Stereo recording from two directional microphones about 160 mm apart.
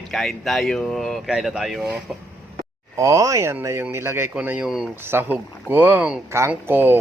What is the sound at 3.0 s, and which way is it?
Speech, 20° right (ahead or behind).